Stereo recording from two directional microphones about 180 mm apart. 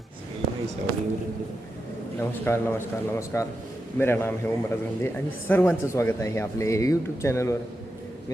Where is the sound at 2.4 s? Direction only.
15° left (ahead or behind).